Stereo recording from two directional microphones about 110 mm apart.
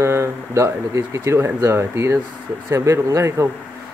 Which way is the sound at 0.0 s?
25° right (ahead or behind).